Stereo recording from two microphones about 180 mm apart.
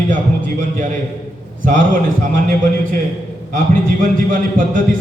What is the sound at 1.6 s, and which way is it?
Speech, 50° right (ahead or behind).